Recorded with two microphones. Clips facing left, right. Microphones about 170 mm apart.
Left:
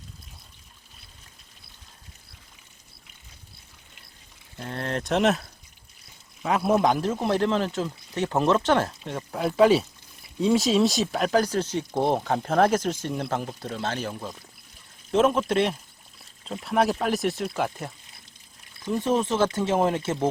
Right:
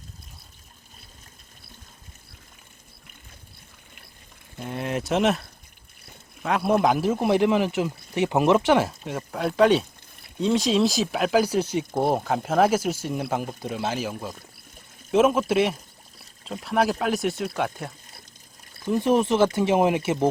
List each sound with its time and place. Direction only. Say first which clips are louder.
4.5 s a man's voice: right 2 dB; 10° right (ahead or behind)
18.9 s a man's voice: right 3 dB; 15° right (ahead or behind)